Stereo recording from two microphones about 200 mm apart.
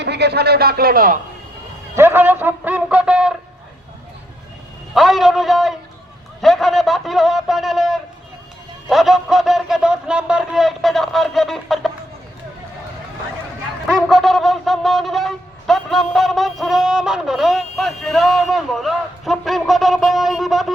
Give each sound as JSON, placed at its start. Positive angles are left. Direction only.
{"t": 0.0, "sound": "speech", "side_deg": -55}
{"t": 2.0, "sound": "speech", "side_deg": -10}
{"t": 4.9, "sound": "wind instrument", "side_deg": 0}
{"t": 14.1, "sound": "wind instrument", "side_deg": 0}